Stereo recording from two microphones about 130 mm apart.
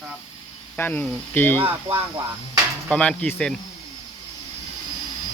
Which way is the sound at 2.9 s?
10° left (ahead or behind).